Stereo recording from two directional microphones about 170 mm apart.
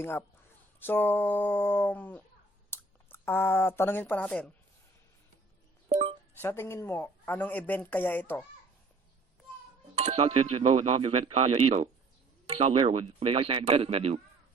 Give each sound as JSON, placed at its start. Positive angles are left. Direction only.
{"t": 0.0, "sound": "speech", "side_deg": 10}
{"t": 5.9, "sound": "a sound", "side_deg": -40}
{"t": 6.4, "sound": "speech", "side_deg": 15}
{"t": 9.9, "sound": "speech", "side_deg": -40}